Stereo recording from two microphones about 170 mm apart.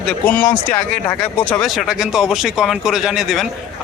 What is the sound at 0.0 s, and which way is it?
Speech, 5° left (ahead or behind).